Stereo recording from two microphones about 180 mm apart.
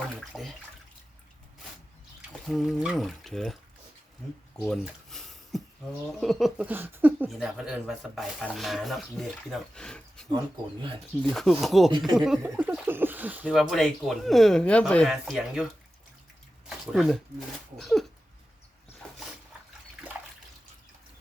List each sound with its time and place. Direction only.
0.2 s speech: centre (ahead or behind)
2.5 s speech: centre (ahead or behind)
4.5 s a sound: 5° left (ahead or behind)
6.1 s speech: centre (ahead or behind)
11.9 s speech: 25° right (ahead or behind)
12.1 s speech: centre (ahead or behind)
19.0 s a sound: 5° left (ahead or behind)